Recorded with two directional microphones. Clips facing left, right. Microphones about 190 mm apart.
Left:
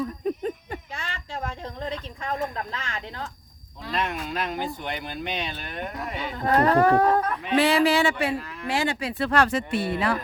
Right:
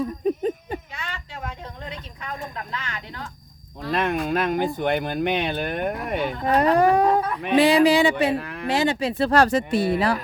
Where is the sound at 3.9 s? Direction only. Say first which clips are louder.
Right 6 dB; 55° right (ahead or behind).